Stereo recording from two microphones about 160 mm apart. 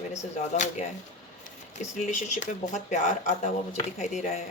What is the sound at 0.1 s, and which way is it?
Speech, 45° left (ahead or behind).